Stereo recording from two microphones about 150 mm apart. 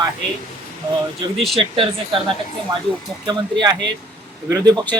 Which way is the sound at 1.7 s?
35° right (ahead or behind).